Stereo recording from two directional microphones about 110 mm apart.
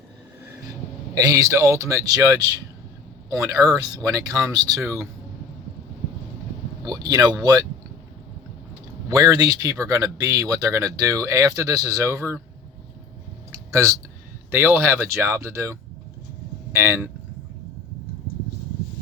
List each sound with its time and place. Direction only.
1.1 s speech: 30° right (ahead or behind)
6.8 s speech: 40° right (ahead or behind)
9.0 s speech: 30° right (ahead or behind)
13.7 s speech: 30° right (ahead or behind)